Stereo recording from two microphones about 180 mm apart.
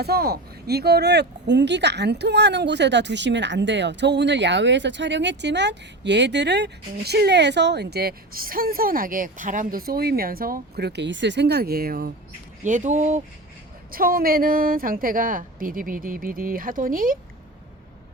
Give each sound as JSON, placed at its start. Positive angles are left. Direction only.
{"t": 0.0, "sound": "speech", "side_deg": -60}
{"t": 12.6, "sound": "a woman's voice", "side_deg": -45}
{"t": 13.9, "sound": "a woman's voice", "side_deg": -55}